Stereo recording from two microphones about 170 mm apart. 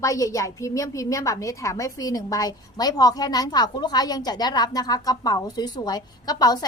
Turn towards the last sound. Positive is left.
turn(degrees=25)  # may be behind; listen again after turning